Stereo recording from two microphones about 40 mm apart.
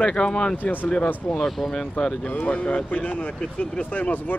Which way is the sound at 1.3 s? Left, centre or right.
Centre.